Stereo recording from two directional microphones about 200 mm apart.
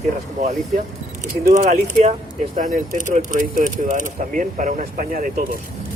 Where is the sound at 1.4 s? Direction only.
35° right (ahead or behind).